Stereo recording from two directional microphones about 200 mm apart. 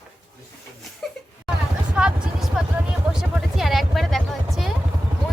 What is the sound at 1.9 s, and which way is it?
Vehicle, 5° right (ahead or behind).